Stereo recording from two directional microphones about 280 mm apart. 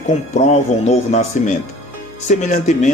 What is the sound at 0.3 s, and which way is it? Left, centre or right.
Speech, left.